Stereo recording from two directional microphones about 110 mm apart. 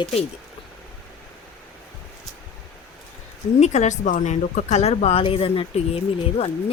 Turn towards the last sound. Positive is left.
turn(degrees=60)  # may be behind; listen again after turning